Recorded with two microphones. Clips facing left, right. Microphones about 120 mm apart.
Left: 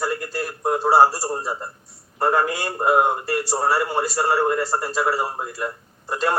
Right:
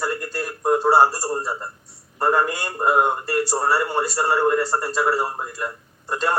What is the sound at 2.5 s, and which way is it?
A man's voice, 10° left (ahead or behind).